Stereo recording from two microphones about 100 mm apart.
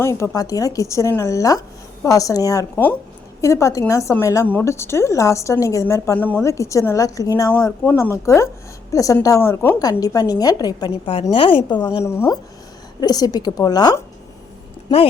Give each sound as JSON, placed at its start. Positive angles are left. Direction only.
{"t": 0.0, "sound": "a woman's voice", "side_deg": 30}
{"t": 6.1, "sound": "a woman's voice", "side_deg": 20}
{"t": 6.4, "sound": "a woman's voice", "side_deg": 30}
{"t": 9.4, "sound": "speech", "side_deg": 25}
{"t": 10.0, "sound": "a woman's voice", "side_deg": 40}
{"t": 11.0, "sound": "a woman's voice", "side_deg": 60}
{"t": 12.0, "sound": "speech", "side_deg": 25}
{"t": 13.0, "sound": "a woman's voice", "side_deg": 40}